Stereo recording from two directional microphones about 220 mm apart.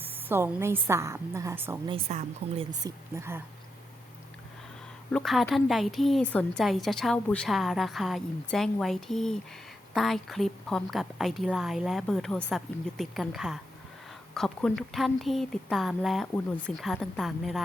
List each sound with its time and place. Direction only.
0.0 s a woman's voice: 10° right (ahead or behind)
1.9 s speech: 25° right (ahead or behind)
2.8 s a woman's voice: 10° right (ahead or behind)
5.1 s a woman's voice: centre (ahead or behind)